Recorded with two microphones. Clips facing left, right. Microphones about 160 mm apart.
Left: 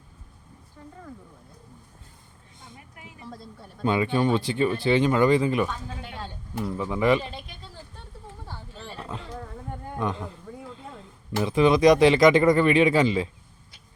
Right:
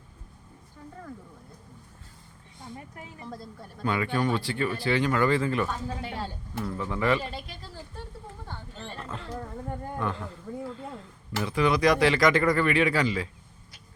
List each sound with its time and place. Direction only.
3.2 s a woman's voice: centre (ahead or behind)
3.8 s speech: 20° left (ahead or behind)
6.7 s speech: 15° left (ahead or behind)
8.4 s a sound: 5° left (ahead or behind)
9.0 s a sound: 15° left (ahead or behind)
10.0 s speech: 20° left (ahead or behind)
10.5 s speech: centre (ahead or behind)
11.3 s speech: 20° left (ahead or behind)